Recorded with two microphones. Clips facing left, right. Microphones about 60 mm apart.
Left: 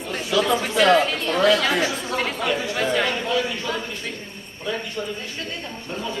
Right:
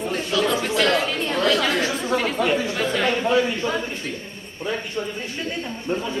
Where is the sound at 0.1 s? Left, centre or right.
Centre.